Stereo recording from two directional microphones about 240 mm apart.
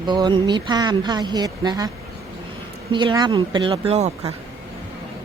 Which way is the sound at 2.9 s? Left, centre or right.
Centre.